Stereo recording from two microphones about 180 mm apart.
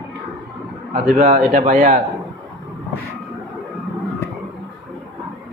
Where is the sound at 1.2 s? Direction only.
35° right (ahead or behind).